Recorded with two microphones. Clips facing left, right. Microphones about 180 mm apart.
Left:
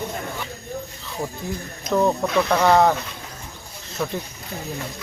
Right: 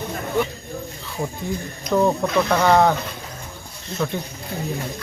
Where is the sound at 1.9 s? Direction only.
Centre (ahead or behind).